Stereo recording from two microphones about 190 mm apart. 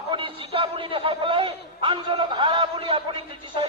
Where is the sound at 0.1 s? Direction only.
25° right (ahead or behind).